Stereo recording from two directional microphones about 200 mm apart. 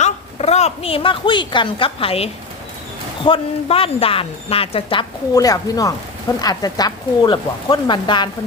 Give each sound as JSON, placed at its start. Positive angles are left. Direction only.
{"t": 0.0, "sound": "a woman's voice", "side_deg": 35}